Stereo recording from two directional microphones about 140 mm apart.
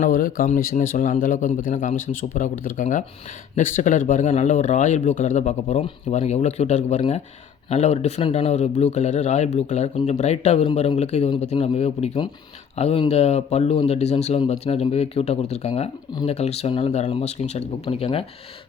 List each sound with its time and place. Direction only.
0.0 s a man's voice: 80° left; by 18.3 s 45° left (ahead or behind)